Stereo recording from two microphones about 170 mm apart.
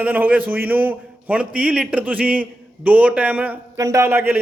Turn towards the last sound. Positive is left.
turn(degrees=-10)  # may be behind; listen again after turning